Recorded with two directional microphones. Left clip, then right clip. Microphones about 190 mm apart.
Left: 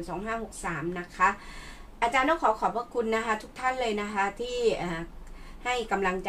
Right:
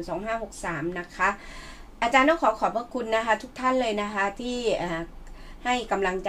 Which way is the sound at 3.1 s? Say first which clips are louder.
Right 4 dB; 40° right (ahead or behind).